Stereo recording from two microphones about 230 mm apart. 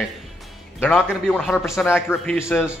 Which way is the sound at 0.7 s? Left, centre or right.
Centre.